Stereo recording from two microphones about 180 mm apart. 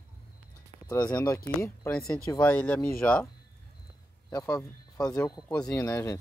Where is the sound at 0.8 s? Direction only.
15° left (ahead or behind).